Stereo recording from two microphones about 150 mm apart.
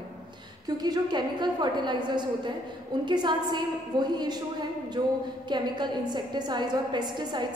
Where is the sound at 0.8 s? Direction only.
30° right (ahead or behind).